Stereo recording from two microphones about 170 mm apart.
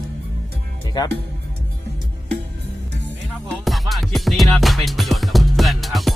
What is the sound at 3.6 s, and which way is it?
Music, centre (ahead or behind).